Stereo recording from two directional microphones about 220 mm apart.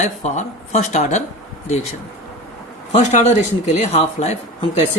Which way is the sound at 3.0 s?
30° left (ahead or behind).